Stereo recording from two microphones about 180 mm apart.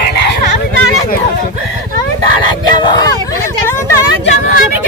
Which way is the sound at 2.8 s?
25° left (ahead or behind).